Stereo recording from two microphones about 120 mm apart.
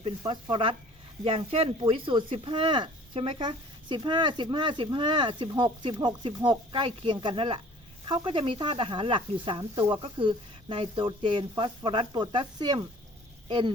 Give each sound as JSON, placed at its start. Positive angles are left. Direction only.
{"t": 0.2, "sound": "speech", "side_deg": -40}